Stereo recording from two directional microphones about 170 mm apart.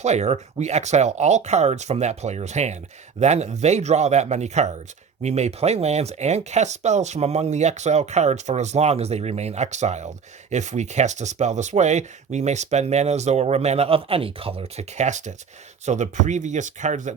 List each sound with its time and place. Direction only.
0.0 s speech: 40° right (ahead or behind)